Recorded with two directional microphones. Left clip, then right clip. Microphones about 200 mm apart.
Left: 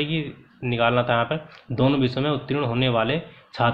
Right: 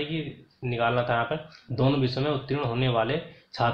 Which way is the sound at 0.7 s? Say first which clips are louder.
Left 4 dB; 35° left (ahead or behind).